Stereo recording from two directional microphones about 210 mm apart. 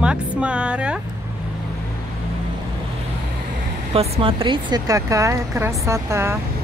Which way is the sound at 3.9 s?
25° right (ahead or behind).